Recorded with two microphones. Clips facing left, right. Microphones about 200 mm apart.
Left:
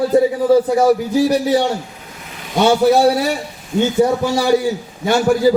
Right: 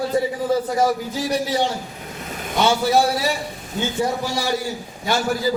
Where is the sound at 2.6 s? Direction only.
60° left (ahead or behind).